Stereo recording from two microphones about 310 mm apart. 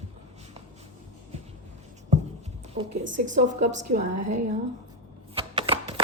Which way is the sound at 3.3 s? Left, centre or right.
Right.